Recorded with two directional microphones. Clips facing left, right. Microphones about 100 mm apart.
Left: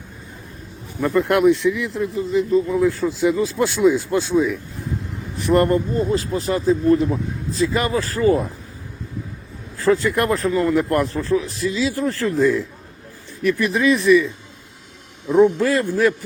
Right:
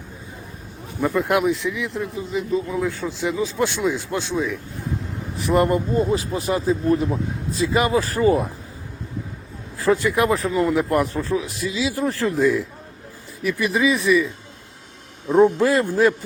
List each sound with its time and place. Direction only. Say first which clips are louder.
1.0 s speech: left 4 dB; centre (ahead or behind)
5.7 s speech: left 1 dB; 20° right (ahead or behind)
9.7 s speech: left 2 dB; 15° right (ahead or behind)
10.1 s speech: left 1 dB; centre (ahead or behind)
11.9 s speech: left 1 dB; 20° right (ahead or behind)
12.4 s speech: left 2 dB; 5° right (ahead or behind)
15.3 s speech: even; 30° right (ahead or behind)